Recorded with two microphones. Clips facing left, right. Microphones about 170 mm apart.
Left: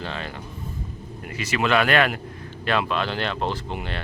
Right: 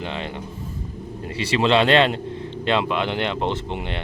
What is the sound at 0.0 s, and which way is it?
A man's voice, 20° right (ahead or behind).